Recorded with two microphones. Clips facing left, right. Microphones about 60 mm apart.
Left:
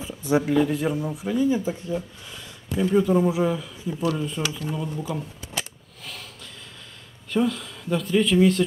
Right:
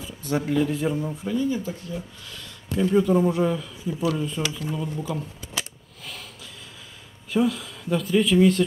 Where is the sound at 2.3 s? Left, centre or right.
Centre.